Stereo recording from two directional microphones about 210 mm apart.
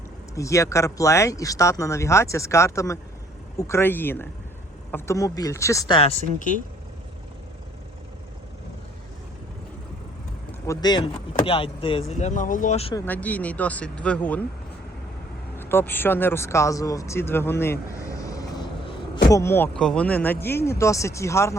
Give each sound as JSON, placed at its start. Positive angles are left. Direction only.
{"t": 0.3, "sound": "speech", "side_deg": 15}
{"t": 10.7, "sound": "speech", "side_deg": 20}
{"t": 12.9, "sound": "speech", "side_deg": 10}
{"t": 15.5, "sound": "speech", "side_deg": 10}